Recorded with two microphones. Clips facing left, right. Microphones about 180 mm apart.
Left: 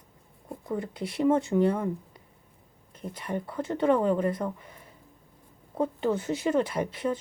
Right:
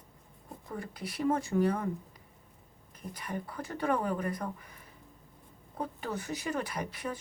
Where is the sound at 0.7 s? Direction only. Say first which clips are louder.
Left 8 dB; 25° left (ahead or behind).